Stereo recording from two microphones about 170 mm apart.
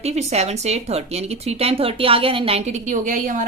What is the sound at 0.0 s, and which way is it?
A woman's voice, 40° right (ahead or behind).